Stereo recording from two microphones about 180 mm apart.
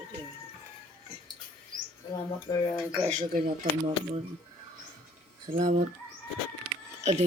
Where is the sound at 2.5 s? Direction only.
20° left (ahead or behind).